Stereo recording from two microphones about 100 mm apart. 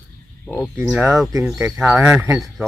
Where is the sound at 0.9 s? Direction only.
5° right (ahead or behind).